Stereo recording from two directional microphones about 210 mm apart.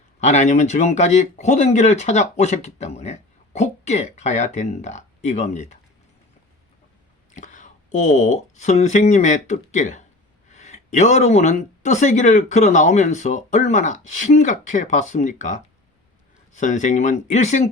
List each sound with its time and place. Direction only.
0.2 s speech: 35° left (ahead or behind)
7.3 s speech: 35° left (ahead or behind)